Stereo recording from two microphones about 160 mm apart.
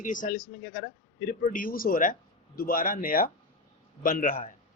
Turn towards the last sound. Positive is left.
turn(degrees=55)  # may be behind; listen again after turning